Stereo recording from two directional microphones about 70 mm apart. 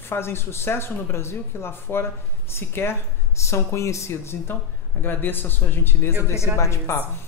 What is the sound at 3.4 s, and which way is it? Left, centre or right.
A woman's voice, left.